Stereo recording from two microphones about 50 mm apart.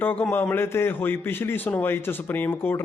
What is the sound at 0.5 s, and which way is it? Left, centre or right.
A man's voice, left.